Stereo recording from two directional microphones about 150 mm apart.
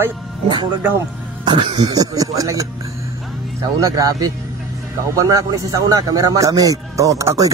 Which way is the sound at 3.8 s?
25° right (ahead or behind).